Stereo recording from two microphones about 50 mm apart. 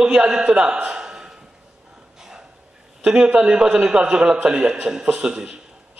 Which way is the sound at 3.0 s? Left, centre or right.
Centre.